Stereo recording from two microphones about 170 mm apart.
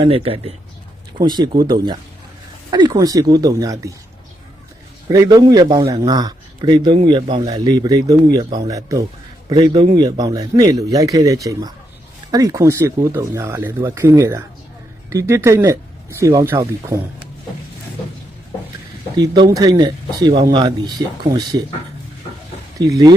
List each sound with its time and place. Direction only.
0.0 s a man's voice: 35° right (ahead or behind)
5.0 s a man's voice: 20° right (ahead or behind)
19.1 s a man's voice: 25° right (ahead or behind)
22.9 s a man's voice: 25° right (ahead or behind)